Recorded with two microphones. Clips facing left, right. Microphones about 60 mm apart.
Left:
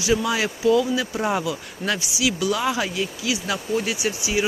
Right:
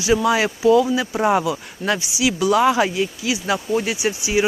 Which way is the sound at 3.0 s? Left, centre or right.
Right.